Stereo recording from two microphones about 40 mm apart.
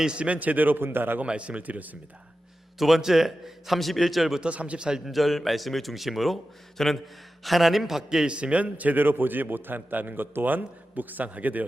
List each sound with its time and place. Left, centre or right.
0.2 s a man's voice: right
1.2 s speech: right
2.7 s a man's voice: centre
3.8 s a man's voice: centre
4.4 s speech: right
4.8 s speech: centre
5.0 s a man's voice: centre
8.4 s speech: right
9.0 s a man's voice: right